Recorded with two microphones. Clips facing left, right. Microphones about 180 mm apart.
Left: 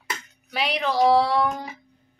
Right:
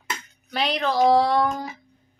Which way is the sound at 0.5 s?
10° left (ahead or behind).